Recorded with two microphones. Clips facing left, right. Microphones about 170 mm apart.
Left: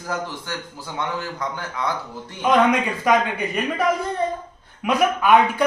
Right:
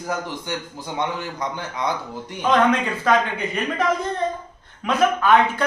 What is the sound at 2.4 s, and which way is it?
Speech, 10° left (ahead or behind).